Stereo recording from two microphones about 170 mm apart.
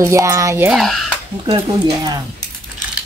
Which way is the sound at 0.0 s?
15° right (ahead or behind).